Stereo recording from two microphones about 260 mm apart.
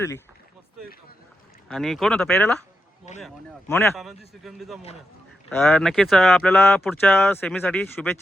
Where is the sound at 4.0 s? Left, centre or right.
Centre.